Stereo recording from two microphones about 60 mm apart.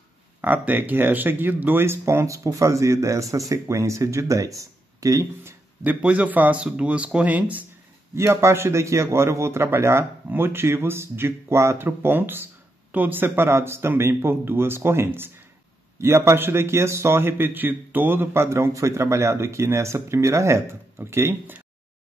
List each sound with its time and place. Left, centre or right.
0.4 s speech: right
2.2 s speech: right
6.0 s speech: right
8.1 s a man's voice: right